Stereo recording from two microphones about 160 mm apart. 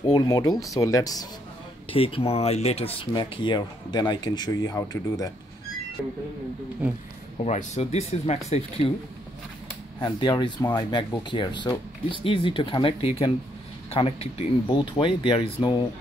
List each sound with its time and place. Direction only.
0.0 s speech: 25° left (ahead or behind)
1.9 s speech: 35° left (ahead or behind)
7.4 s speech: 45° left (ahead or behind)
10.2 s speech: 30° left (ahead or behind)